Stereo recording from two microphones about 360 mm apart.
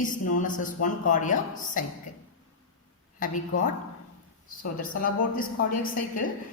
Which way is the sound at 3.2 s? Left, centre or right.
Left.